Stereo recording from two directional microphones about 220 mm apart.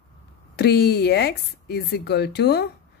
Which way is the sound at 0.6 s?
45° left (ahead or behind).